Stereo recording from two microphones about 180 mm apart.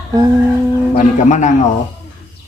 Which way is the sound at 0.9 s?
45° left (ahead or behind).